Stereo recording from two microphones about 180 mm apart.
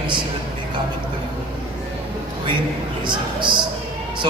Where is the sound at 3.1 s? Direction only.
25° right (ahead or behind).